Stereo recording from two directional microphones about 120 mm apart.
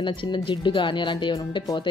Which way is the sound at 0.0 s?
40° left (ahead or behind).